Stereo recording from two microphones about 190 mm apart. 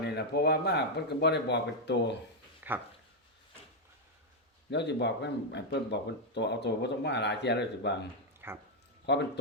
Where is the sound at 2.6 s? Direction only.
10° right (ahead or behind).